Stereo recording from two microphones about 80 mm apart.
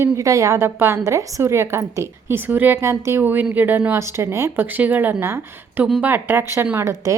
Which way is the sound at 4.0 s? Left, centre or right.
Right.